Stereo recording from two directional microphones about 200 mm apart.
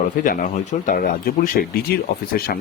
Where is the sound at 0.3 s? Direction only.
45° left (ahead or behind).